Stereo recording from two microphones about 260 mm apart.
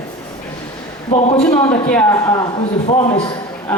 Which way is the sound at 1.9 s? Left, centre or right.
Centre.